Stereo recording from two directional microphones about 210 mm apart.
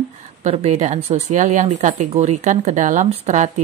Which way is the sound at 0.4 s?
30° right (ahead or behind).